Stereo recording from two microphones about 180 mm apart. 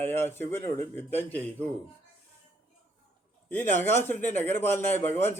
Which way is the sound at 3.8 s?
10° left (ahead or behind).